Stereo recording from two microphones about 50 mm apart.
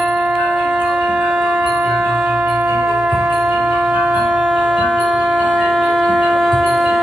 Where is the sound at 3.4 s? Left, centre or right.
Centre.